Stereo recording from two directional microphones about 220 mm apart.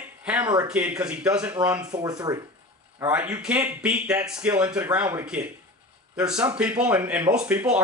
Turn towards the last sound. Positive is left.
turn(degrees=-5)  # may be behind; listen again after turning